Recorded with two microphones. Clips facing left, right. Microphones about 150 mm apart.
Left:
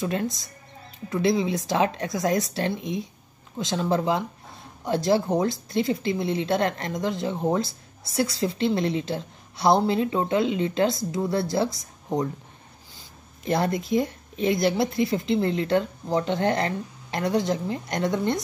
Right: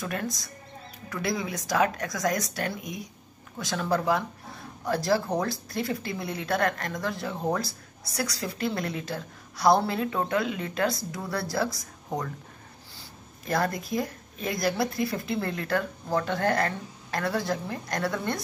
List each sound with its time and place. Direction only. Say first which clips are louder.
0.0 s speech: left 5 dB; 25° left (ahead or behind)
13.5 s speech: left 4 dB; 20° left (ahead or behind)